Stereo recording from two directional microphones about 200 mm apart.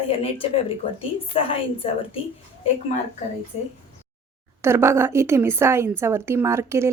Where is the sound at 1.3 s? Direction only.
30° left (ahead or behind).